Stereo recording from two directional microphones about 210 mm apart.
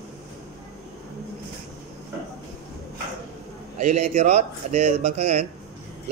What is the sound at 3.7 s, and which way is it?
Speech, 35° right (ahead or behind).